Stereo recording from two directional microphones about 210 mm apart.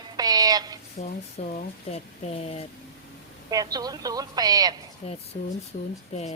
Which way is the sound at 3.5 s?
15° right (ahead or behind).